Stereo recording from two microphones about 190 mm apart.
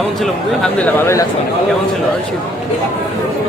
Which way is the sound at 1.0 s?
15° left (ahead or behind).